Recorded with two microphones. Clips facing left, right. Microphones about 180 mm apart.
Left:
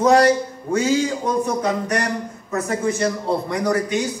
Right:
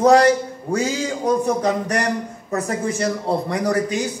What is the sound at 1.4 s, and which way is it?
A man's voice, 35° right (ahead or behind).